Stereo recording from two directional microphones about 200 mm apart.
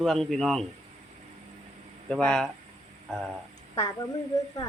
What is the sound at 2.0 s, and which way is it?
Speech, 5° left (ahead or behind).